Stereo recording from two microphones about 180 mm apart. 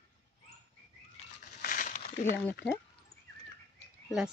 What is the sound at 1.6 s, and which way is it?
Crumpling, 50° left (ahead or behind).